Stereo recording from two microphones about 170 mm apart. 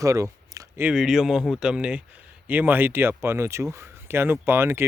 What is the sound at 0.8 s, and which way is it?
Speech, 5° right (ahead or behind).